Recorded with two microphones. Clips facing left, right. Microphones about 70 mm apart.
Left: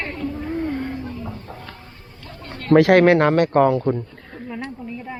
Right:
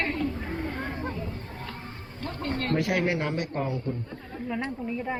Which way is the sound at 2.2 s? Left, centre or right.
Right.